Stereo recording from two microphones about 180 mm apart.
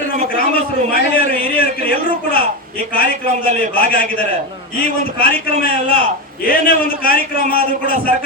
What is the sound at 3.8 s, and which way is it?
A man's voice, 55° left (ahead or behind).